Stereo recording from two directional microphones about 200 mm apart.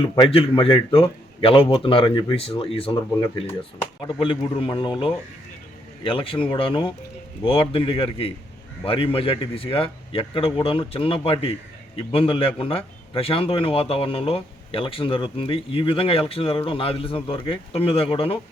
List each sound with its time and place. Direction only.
0.0 s speech: 25° left (ahead or behind)